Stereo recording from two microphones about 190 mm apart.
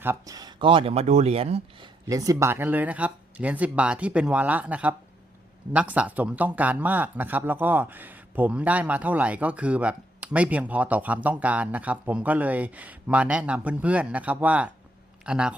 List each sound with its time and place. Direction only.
0.0 s speech: 15° right (ahead or behind); by 1.9 s 30° right (ahead or behind)
2.0 s speech: 20° right (ahead or behind)